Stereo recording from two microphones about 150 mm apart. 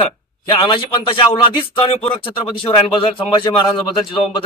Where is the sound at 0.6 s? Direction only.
35° left (ahead or behind).